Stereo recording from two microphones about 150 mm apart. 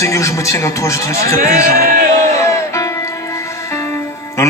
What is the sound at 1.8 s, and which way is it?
Speech, 80° right.